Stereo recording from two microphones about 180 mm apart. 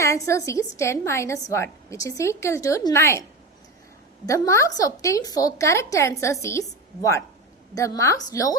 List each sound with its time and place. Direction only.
0.0 s a woman's voice: 15° left (ahead or behind)
4.3 s a woman's voice: 15° left (ahead or behind)